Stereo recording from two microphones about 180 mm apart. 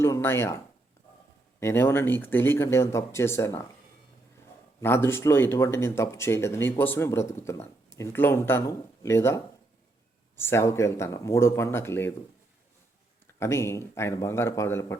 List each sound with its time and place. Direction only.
0.0 s speech: 15° left (ahead or behind)
4.8 s speech: 15° left (ahead or behind)
13.4 s speech: 15° left (ahead or behind)